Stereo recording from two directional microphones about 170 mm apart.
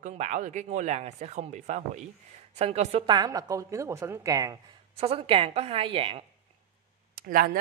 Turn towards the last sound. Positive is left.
turn(degrees=-55)  # may be behind; listen again after turning